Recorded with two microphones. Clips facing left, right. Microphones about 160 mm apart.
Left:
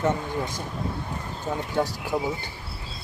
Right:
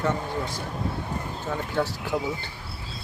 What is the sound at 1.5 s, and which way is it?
Speech, 15° left (ahead or behind).